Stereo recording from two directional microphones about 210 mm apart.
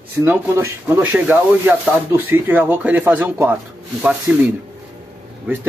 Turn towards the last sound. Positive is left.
turn(degrees=-10)  # may be behind; listen again after turning